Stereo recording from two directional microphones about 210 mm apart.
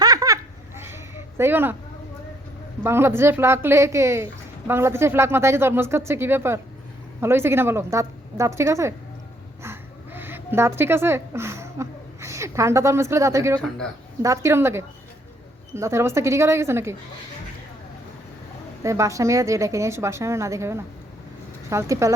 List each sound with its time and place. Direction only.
0.0 s laughter: 15° right (ahead or behind)
0.8 s a sound: 10° right (ahead or behind)
2.8 s a woman's voice: 10° right (ahead or behind)
9.6 s a sound: 10° right (ahead or behind)
13.6 s a man's voice: 5° left (ahead or behind)
14.2 s a woman's voice: 15° right (ahead or behind)
18.8 s a woman's voice: 15° right (ahead or behind)